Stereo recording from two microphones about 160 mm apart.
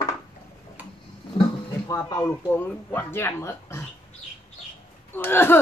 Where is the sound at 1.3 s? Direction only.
35° left (ahead or behind).